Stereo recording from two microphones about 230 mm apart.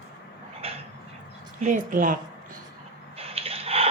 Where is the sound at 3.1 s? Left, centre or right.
Right.